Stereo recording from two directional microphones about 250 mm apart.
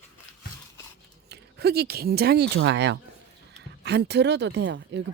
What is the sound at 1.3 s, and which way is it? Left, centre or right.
Speech, right.